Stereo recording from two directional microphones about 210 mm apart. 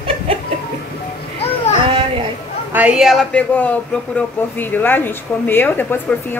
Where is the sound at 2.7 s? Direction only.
5° right (ahead or behind); by 6.1 s 10° left (ahead or behind).